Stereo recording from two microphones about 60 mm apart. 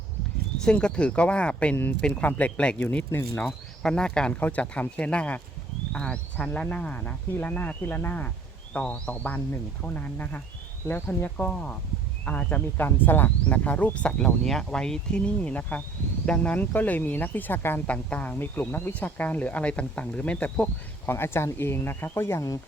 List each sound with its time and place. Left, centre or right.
0.7 s speech: centre
1.7 s speech: left
3.0 s speech: left
3.4 s speech: centre
4.3 s speech: left
7.3 s speech: left
11.3 s speech: left
14.4 s speech: centre; by 17.8 s left
17.8 s speech: left
21.1 s speech: left